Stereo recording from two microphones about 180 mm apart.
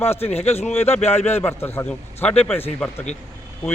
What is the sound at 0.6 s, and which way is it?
Speech, 15° left (ahead or behind).